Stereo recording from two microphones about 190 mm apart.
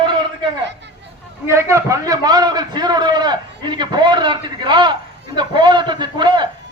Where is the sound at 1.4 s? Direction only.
15° right (ahead or behind).